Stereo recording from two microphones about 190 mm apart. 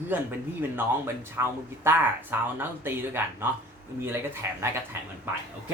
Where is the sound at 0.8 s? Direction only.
10° right (ahead or behind).